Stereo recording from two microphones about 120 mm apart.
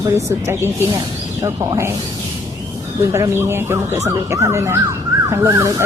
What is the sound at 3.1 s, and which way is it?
Speech, 20° right (ahead or behind).